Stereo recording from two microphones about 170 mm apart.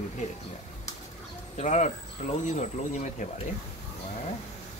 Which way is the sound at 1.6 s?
45° left (ahead or behind).